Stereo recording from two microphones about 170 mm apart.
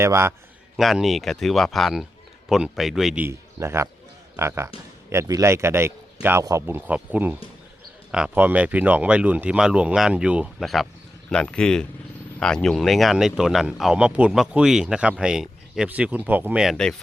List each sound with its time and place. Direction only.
0.0 s speech: 15° right (ahead or behind)
0.8 s speech: centre (ahead or behind)
3.2 s speech: 15° right (ahead or behind); by 16.9 s centre (ahead or behind)